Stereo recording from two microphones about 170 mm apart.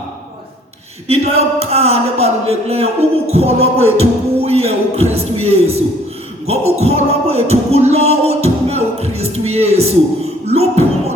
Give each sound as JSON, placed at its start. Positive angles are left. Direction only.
{"t": 1.0, "sound": "speech", "side_deg": -35}
{"t": 5.1, "sound": "music", "side_deg": -35}